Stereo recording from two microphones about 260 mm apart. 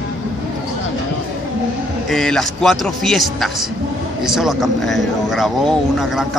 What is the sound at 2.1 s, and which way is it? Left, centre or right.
Speech, centre.